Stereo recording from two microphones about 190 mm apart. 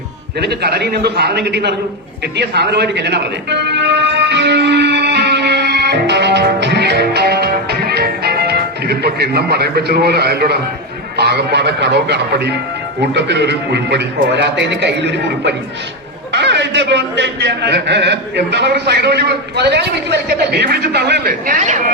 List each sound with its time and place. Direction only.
0.3 s a man's voice: 60° right (ahead or behind)
2.3 s music: 60° right (ahead or behind)
11.2 s a man's voice: 60° right (ahead or behind); by 21.8 s 45° right (ahead or behind)